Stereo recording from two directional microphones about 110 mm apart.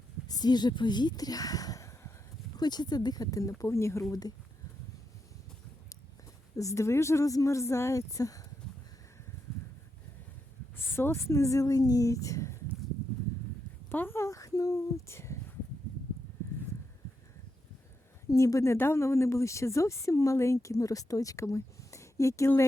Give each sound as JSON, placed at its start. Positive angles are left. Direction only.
{"t": 0.3, "sound": "speech", "side_deg": 40}
{"t": 2.6, "sound": "speech", "side_deg": 40}
{"t": 4.1, "sound": "speech", "side_deg": 35}
{"t": 6.6, "sound": "speech", "side_deg": 30}
{"t": 10.8, "sound": "speech", "side_deg": 20}
{"t": 13.9, "sound": "speech", "side_deg": 20}
{"t": 18.3, "sound": "speech", "side_deg": 30}